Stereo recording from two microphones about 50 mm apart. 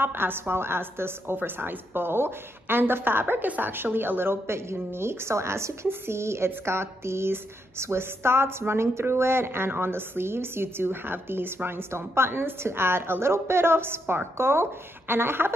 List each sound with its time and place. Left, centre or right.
0.0 s a woman's voice: right
5.9 s a woman's voice: right